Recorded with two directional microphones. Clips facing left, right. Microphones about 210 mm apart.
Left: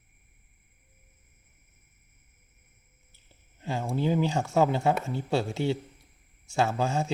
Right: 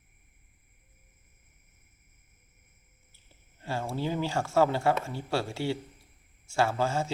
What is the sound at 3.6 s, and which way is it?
A man's voice, 15° left (ahead or behind).